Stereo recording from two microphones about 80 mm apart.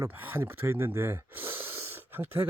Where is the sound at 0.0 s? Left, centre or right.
Right.